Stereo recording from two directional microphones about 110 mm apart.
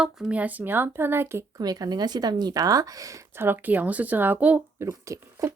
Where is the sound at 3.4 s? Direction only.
15° right (ahead or behind).